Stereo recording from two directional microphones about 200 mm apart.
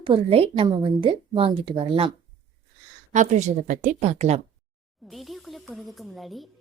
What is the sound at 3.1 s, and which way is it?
A woman's voice, 35° right (ahead or behind).